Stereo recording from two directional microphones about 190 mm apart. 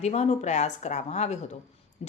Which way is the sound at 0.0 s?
35° left (ahead or behind).